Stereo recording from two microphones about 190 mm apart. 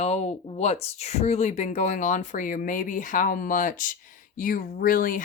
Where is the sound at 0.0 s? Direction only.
35° left (ahead or behind).